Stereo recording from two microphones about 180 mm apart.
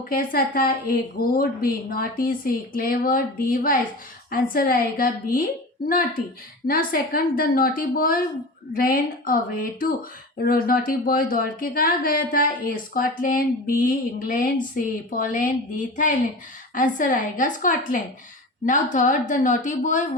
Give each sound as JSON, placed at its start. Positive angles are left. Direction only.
{"t": 0.1, "sound": "a woman's voice", "side_deg": 55}
{"t": 6.7, "sound": "speech", "side_deg": 55}